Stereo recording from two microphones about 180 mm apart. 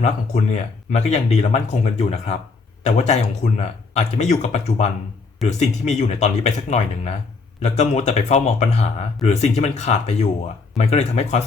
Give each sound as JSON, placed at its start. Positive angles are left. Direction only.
{"t": 0.0, "sound": "speech", "side_deg": 40}